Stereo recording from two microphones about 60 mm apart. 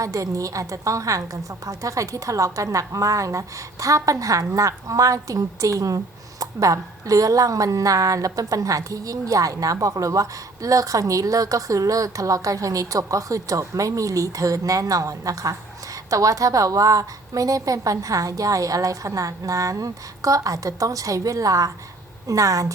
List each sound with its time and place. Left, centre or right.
0.0 s a woman's voice: right